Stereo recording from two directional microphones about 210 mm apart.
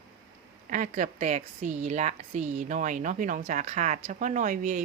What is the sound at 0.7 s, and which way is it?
A woman's voice, 40° right (ahead or behind).